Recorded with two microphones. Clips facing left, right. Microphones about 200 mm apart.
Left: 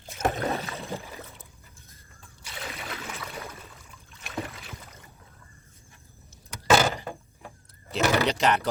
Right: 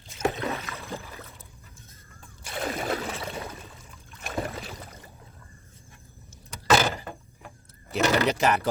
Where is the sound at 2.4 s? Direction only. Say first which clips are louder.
Right 9 dB; 50° right (ahead or behind); by 3.5 s 30° right (ahead or behind).